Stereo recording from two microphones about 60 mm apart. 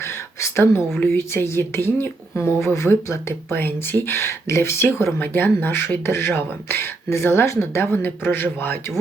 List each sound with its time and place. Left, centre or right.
0.0 s a sound: left
0.9 s speech: left
3.5 s speech: left
7.9 s speech: left